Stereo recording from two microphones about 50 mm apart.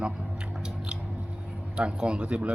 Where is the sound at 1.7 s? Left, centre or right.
Right.